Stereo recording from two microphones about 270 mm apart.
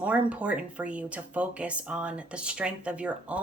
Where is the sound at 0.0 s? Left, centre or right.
Centre.